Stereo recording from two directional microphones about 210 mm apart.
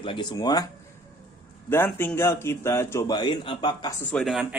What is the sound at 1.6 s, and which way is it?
Speech, 10° left (ahead or behind).